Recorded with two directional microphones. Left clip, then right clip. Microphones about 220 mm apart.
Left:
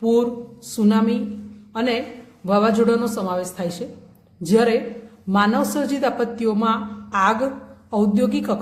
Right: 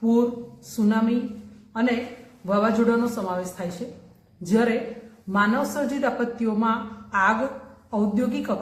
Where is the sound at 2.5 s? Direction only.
50° left (ahead or behind).